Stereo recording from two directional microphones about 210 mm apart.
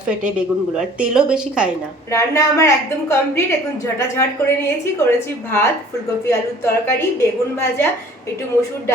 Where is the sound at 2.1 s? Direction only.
15° left (ahead or behind).